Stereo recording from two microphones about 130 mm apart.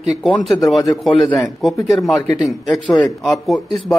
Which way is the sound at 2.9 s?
30° left (ahead or behind).